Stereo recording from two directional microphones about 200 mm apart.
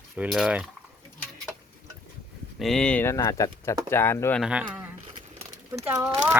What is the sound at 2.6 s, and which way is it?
Speech, centre (ahead or behind).